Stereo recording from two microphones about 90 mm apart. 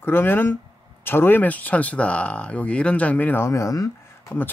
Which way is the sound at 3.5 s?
35° left (ahead or behind).